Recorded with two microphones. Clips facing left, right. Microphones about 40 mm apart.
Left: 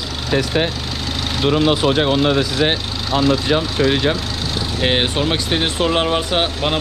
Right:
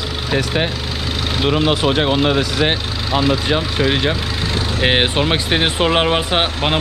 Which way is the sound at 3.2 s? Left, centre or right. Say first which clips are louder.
Left 2 dB; centre.